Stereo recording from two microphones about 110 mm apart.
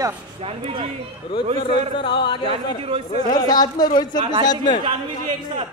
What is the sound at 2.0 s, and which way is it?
Speech, 45° left (ahead or behind).